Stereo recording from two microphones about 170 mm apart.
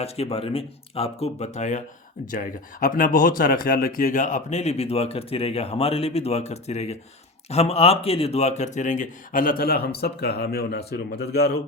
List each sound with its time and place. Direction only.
0.0 s speech: 35° left (ahead or behind); by 11.5 s 70° left (ahead or behind)